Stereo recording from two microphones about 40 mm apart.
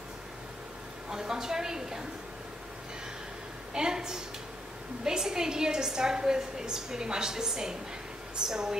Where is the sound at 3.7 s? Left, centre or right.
Centre.